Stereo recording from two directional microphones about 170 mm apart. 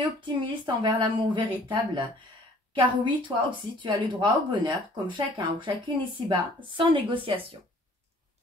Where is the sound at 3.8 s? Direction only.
30° right (ahead or behind).